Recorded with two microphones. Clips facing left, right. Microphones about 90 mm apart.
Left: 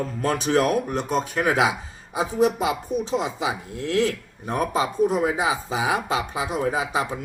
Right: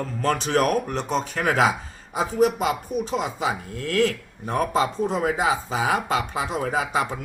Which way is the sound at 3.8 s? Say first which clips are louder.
Even; 20° left (ahead or behind).